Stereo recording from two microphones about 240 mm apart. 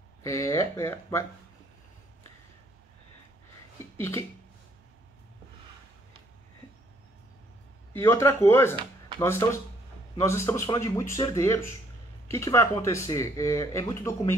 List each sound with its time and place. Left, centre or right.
0.2 s speech: centre
7.9 s speech: centre